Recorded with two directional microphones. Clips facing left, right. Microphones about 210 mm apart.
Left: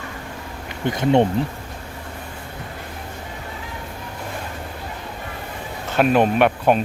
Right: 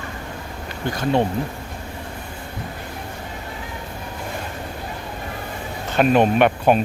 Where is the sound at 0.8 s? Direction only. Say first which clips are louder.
Left 3 dB; 20° left (ahead or behind).